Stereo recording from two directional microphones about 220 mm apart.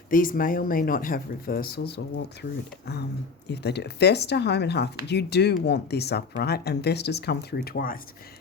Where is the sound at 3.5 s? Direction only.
50° left (ahead or behind).